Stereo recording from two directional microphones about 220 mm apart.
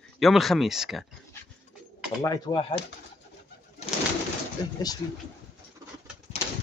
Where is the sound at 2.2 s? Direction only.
15° left (ahead or behind).